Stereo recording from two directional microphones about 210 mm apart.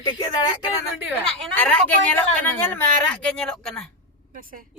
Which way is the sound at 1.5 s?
5° left (ahead or behind).